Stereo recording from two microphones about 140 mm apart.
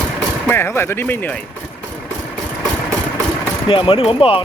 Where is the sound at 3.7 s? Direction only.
40° left (ahead or behind).